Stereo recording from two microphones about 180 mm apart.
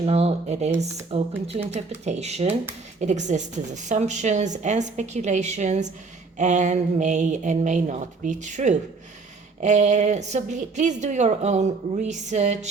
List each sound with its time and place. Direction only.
0.0 s a woman's voice: 35° right (ahead or behind)